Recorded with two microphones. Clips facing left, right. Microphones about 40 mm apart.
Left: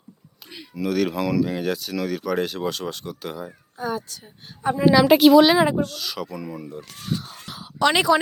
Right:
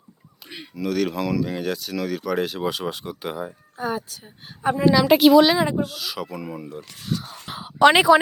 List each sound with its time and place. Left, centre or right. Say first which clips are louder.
0.7 s a woman's voice: left 1 dB; centre
4.9 s speech: left 1 dB; centre
5.5 s speech: left 3 dB; centre
5.8 s a woman's voice: even; centre
7.4 s a sound: right 6 dB; right